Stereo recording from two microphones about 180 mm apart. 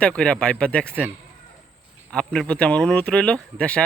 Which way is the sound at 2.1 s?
5° left (ahead or behind).